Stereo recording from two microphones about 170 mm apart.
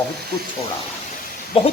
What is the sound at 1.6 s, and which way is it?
Speech, 30° left (ahead or behind).